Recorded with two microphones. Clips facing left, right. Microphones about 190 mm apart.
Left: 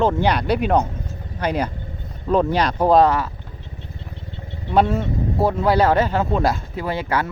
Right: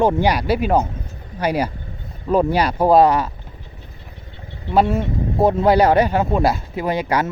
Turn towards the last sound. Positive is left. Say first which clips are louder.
# right 3 dB
turn(degrees=-15)  # may be behind; listen again after turning